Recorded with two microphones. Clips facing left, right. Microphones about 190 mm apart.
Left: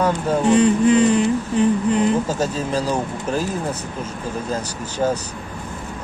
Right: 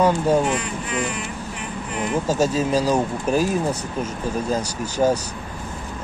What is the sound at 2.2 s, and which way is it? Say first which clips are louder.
Speech: right 3 dB; 10° right (ahead or behind).